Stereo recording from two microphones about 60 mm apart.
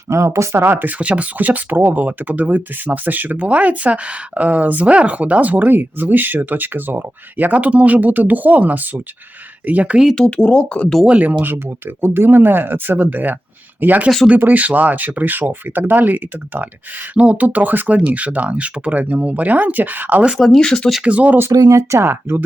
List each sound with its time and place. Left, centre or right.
0.1 s speech: right
0.6 s speech: right
0.9 s speech: right
10.2 s speech: centre
11.0 s speech: right
20.4 s speech: centre
20.7 s speech: centre
21.0 s speech: right
21.5 s speech: right